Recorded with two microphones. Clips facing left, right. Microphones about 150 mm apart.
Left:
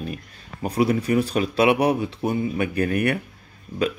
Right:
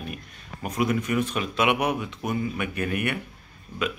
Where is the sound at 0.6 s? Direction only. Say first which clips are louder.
Left 4 dB; 35° left (ahead or behind).